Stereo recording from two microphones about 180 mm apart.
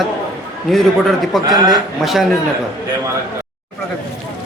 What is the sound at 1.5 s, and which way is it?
Speech, 20° right (ahead or behind).